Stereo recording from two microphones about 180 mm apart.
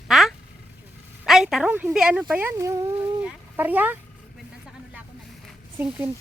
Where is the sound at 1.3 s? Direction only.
Centre (ahead or behind).